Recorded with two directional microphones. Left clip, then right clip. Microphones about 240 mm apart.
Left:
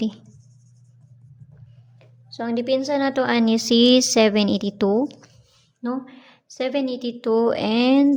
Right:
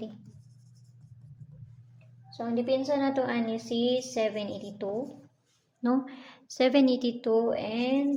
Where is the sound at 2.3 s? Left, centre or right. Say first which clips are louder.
Left 6 dB; left.